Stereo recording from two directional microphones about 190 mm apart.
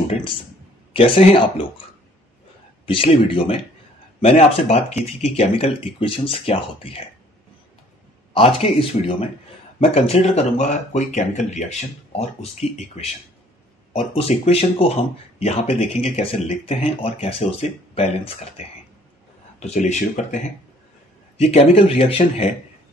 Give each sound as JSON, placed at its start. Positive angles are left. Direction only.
{"t": 0.9, "sound": "speech", "side_deg": 30}
{"t": 2.9, "sound": "speech", "side_deg": 30}
{"t": 8.3, "sound": "speech", "side_deg": 30}